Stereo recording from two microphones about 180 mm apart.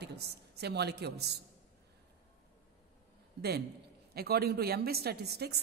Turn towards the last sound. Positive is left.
turn(degrees=-65)  # may be behind; listen again after turning